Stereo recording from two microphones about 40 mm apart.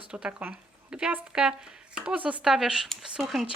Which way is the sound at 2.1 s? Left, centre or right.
Right.